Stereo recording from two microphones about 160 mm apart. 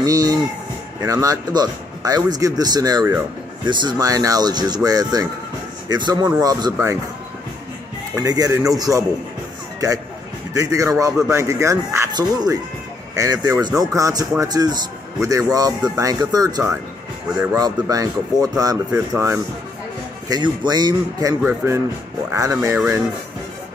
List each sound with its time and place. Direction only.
0.0 s music: 25° right (ahead or behind)
1.0 s speech: 20° right (ahead or behind)
8.2 s speech: 20° right (ahead or behind)
10.5 s speech: 20° right (ahead or behind)